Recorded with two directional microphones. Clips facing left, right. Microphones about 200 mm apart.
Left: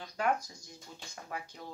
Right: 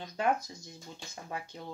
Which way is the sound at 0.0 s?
25° right (ahead or behind).